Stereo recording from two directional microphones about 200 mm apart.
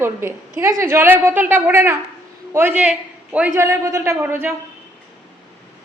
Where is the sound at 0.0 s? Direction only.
10° right (ahead or behind).